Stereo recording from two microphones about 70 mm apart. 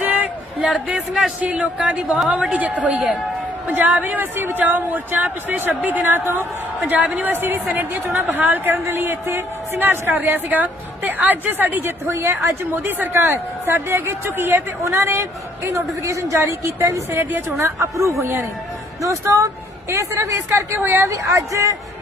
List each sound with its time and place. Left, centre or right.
0.0 s a sound: right
0.6 s speech: centre
1.4 s a woman's voice: centre
7.3 s a woman's voice: right
17.2 s a woman's voice: right
17.7 s speech: right
18.2 s a woman's voice: right
19.0 s a woman's voice: right
21.2 s speech: right